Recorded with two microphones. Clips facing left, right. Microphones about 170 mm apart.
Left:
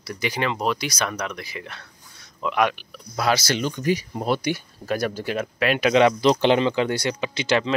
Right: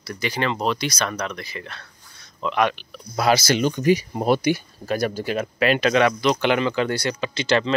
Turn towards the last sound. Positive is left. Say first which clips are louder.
# right 1 dB
turn(degrees=15)  # may be behind; listen again after turning